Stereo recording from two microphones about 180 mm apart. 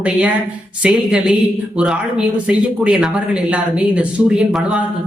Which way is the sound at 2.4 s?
5° right (ahead or behind).